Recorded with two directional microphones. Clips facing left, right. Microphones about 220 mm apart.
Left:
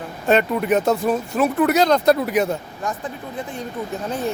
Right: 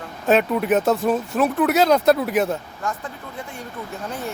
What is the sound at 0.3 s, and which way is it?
Speech, centre (ahead or behind).